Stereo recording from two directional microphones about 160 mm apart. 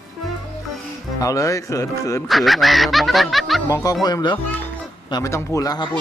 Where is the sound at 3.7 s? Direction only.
20° left (ahead or behind).